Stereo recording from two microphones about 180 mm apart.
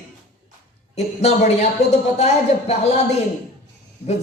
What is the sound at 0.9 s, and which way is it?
Speech, 40° left (ahead or behind).